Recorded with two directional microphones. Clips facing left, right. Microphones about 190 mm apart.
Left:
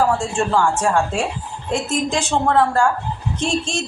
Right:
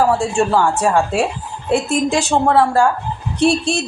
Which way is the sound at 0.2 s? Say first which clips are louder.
Right 3 dB; 15° right (ahead or behind).